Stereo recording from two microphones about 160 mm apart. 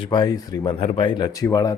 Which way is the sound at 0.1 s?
30° left (ahead or behind).